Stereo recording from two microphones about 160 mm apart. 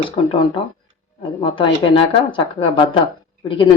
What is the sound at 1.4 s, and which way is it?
Speech, 30° left (ahead or behind).